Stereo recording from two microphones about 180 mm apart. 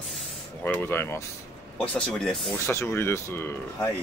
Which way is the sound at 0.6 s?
10° left (ahead or behind).